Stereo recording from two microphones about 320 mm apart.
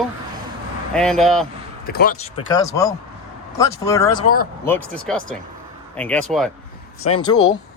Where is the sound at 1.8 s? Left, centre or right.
Left; by 6.5 s centre.